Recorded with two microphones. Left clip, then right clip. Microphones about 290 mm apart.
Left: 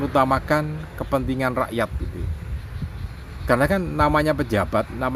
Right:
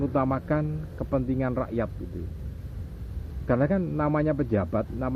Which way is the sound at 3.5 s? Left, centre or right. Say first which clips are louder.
Left 6 dB; left.